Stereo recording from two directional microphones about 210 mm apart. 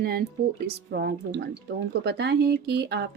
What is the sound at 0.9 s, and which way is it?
A woman's voice, 50° right (ahead or behind).